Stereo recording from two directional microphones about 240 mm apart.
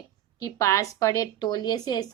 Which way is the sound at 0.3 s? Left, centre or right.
Centre.